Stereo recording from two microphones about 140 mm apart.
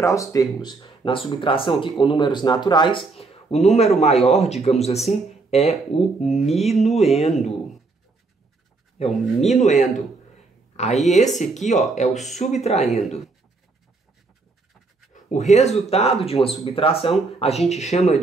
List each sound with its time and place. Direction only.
0.0 s speech: 25° left (ahead or behind)
3.2 s speech: 50° left (ahead or behind)
8.9 s speech: 55° left (ahead or behind)
15.1 s speech: 60° left (ahead or behind)